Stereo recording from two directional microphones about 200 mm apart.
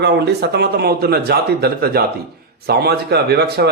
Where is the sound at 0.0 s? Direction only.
55° right (ahead or behind).